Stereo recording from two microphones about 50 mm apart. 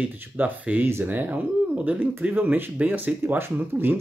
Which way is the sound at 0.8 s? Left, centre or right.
Right.